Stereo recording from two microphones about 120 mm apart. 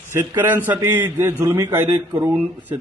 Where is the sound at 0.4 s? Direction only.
15° right (ahead or behind).